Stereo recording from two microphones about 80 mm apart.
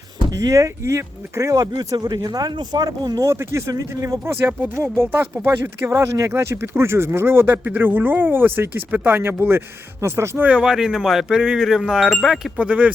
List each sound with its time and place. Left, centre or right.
0.3 s speech: right
1.6 s speech: right
3.2 s speech: right
4.3 s speech: right
5.9 s speech: right
10.4 s speech: centre
12.5 s speech: centre